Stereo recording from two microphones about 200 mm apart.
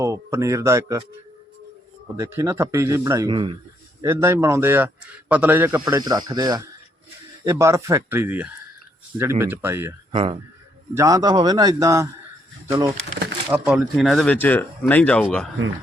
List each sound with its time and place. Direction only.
0.0 s a man's voice: 15° right (ahead or behind)
2.1 s a man's voice: 15° right (ahead or behind)
4.0 s a man's voice: 15° right (ahead or behind)
5.8 s a man's voice: 20° right (ahead or behind)
10.1 s a man's voice: 25° right (ahead or behind)
13.5 s speech: 5° right (ahead or behind)